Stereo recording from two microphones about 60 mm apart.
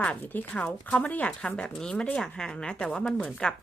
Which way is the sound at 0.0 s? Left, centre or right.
Left.